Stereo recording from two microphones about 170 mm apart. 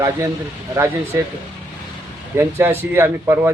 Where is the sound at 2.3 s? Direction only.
15° right (ahead or behind).